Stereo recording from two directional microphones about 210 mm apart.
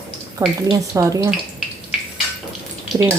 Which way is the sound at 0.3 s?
15° right (ahead or behind).